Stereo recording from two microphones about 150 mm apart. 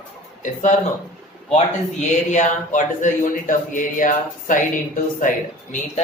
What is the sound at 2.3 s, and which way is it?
Speech, 55° left (ahead or behind).